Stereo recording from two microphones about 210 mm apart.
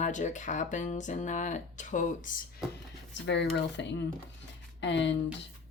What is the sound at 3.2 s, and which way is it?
Speech, 55° left (ahead or behind).